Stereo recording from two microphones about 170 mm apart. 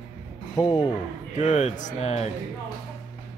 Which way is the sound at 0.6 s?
25° left (ahead or behind).